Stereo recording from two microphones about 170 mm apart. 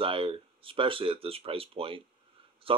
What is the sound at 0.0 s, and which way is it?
Speech, 30° right (ahead or behind).